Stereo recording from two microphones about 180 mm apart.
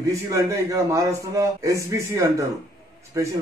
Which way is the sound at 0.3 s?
15° right (ahead or behind).